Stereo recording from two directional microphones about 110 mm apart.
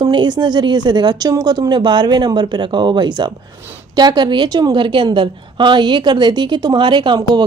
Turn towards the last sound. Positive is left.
turn(degrees=-40)  # may be behind; listen again after turning